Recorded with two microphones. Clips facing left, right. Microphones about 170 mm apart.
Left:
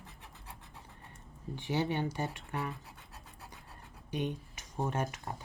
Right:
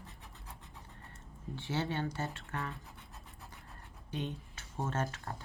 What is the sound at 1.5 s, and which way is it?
Speech, 15° left (ahead or behind).